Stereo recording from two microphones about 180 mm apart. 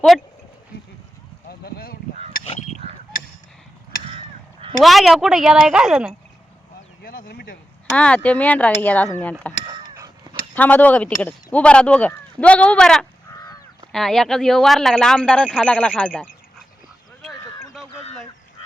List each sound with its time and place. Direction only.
1.5 s speech: 55° left (ahead or behind)
2.4 s speech: 35° left (ahead or behind)
4.8 s speech: centre (ahead or behind)
7.0 s a sound: 50° left (ahead or behind)
7.9 s speech: 5° left (ahead or behind)
9.6 s honk: 20° right (ahead or behind)
10.5 s speech: 10° left (ahead or behind)